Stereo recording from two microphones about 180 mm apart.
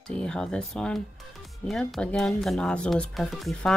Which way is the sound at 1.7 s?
5° left (ahead or behind).